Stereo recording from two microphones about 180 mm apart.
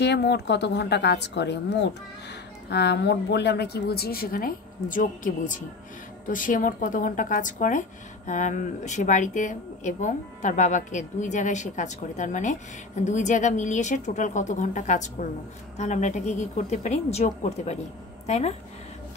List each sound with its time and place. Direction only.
0.0 s a woman's voice: 70° left (ahead or behind); by 18.5 s 35° left (ahead or behind)